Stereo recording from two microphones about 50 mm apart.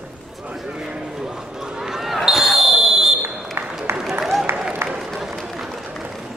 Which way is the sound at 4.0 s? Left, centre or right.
Centre.